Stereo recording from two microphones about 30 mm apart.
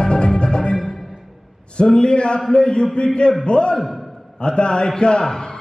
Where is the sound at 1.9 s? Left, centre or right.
Left.